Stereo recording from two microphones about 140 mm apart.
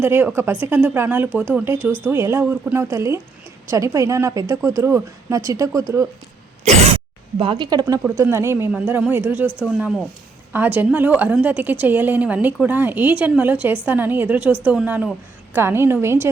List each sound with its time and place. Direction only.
0.0 s a woman's voice: 15° right (ahead or behind)
6.7 s speech: 45° right (ahead or behind); by 8.0 s 30° right (ahead or behind)
8.0 s a woman's voice: 15° right (ahead or behind)